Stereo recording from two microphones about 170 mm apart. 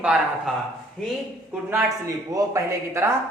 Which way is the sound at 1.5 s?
10° right (ahead or behind).